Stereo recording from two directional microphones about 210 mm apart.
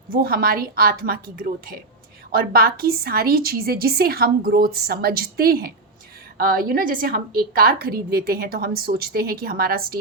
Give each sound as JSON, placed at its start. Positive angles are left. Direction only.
{"t": 0.1, "sound": "a woman's voice", "side_deg": -45}